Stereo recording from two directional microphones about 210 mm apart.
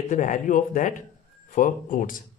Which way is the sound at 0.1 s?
35° left (ahead or behind).